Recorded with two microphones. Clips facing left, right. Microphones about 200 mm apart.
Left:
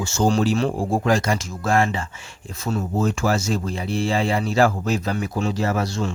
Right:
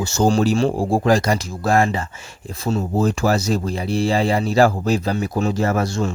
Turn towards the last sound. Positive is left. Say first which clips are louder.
# right 3 dB
turn(degrees=-50)  # may be behind; listen again after turning